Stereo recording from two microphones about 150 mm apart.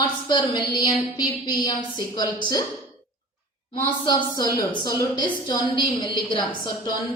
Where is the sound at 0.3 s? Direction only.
30° left (ahead or behind).